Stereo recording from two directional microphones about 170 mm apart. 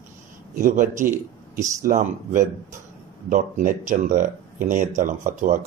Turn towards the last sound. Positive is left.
turn(degrees=-50)  # may be behind; listen again after turning